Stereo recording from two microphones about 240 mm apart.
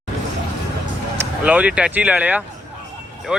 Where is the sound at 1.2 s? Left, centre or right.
Centre.